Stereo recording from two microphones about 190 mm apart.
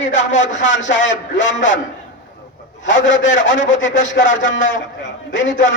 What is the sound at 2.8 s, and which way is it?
A man's voice, 75° left (ahead or behind).